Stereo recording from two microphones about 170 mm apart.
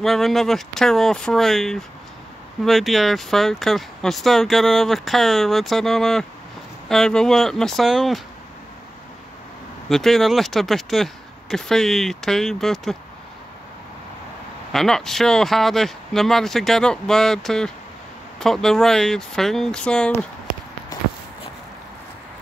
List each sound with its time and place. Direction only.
0.0 s speech: centre (ahead or behind)
9.8 s speech: centre (ahead or behind)
14.7 s speech: centre (ahead or behind)
20.9 s a sound: 20° left (ahead or behind)